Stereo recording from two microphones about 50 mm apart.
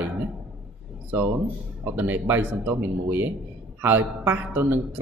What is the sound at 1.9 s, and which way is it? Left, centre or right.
Speech, right.